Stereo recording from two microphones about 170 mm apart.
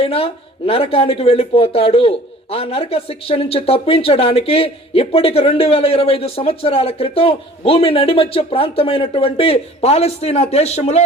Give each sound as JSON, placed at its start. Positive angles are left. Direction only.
{"t": 0.0, "sound": "speech", "side_deg": 35}